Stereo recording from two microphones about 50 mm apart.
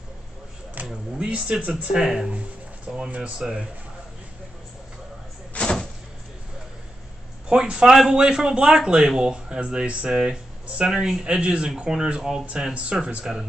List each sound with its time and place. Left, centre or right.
0.8 s a sound: right
1.2 s a man's voice: right
3.3 s a man's voice: centre
5.5 s vehicle: centre
7.4 s a man's voice: centre